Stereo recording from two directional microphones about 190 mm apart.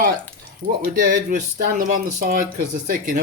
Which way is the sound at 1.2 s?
45° right (ahead or behind).